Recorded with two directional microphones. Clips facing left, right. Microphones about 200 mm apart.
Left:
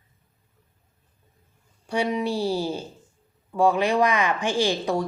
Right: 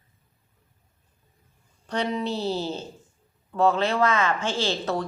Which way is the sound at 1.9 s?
10° left (ahead or behind).